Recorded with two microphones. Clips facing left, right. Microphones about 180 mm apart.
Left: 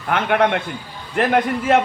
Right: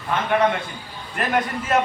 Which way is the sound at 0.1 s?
70° left (ahead or behind).